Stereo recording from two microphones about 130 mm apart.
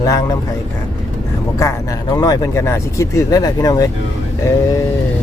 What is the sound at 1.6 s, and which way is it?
Speech, 25° left (ahead or behind).